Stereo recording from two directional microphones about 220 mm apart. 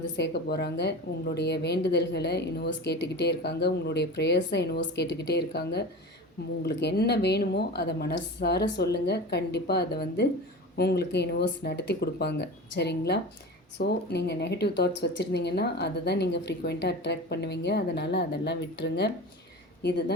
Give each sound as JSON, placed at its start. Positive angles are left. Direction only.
{"t": 0.0, "sound": "speech", "side_deg": 50}